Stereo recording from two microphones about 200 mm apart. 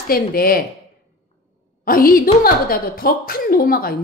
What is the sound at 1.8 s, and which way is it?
A woman's voice, 45° left (ahead or behind).